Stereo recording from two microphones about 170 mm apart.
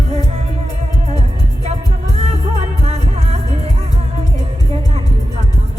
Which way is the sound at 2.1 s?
40° right (ahead or behind).